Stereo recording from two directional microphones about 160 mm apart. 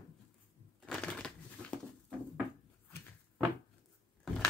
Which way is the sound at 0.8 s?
5° left (ahead or behind).